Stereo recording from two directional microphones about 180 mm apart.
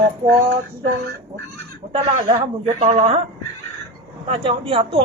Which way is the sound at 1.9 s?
30° right (ahead or behind).